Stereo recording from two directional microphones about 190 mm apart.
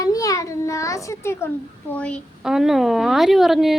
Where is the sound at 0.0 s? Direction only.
20° left (ahead or behind).